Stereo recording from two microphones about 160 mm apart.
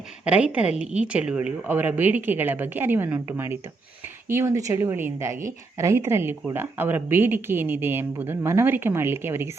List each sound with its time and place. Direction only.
0.3 s speech: 5° right (ahead or behind)